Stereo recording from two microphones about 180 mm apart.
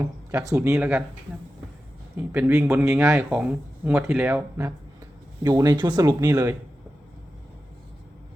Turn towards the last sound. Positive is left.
turn(degrees=-20)  # may be behind; listen again after turning